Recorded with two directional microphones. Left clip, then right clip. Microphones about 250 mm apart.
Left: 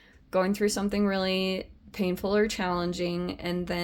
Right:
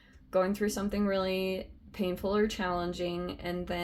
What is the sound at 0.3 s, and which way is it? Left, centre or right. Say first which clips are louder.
Speech: left 3 dB; left.